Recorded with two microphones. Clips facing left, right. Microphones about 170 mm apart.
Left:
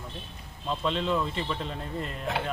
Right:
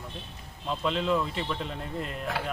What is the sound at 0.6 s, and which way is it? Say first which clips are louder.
Speech: right 1 dB; centre (ahead or behind).